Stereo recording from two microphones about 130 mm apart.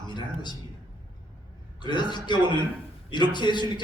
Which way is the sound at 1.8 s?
35° left (ahead or behind).